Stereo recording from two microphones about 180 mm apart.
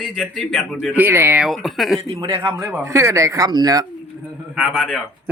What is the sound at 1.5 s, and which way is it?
Speech, centre (ahead or behind).